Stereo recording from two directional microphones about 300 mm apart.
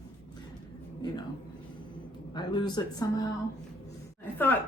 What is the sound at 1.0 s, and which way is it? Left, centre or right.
Speech, centre.